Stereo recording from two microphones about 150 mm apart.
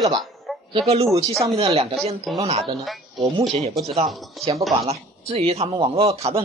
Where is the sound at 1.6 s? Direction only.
40° right (ahead or behind).